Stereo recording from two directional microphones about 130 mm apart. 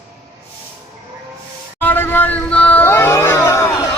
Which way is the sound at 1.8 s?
15° left (ahead or behind).